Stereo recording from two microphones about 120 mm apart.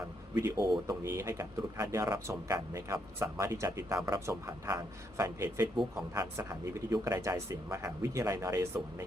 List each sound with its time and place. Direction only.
0.3 s speech: 30° right (ahead or behind)